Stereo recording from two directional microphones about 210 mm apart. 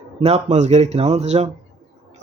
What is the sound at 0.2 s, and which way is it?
Speech, 30° right (ahead or behind).